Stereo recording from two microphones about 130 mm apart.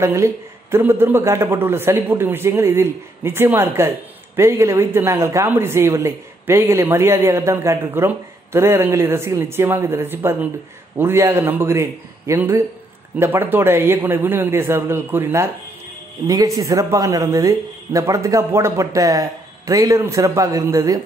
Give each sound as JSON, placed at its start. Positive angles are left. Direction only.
{"t": 0.0, "sound": "a man's voice", "side_deg": -20}
{"t": 16.3, "sound": "speech", "side_deg": -30}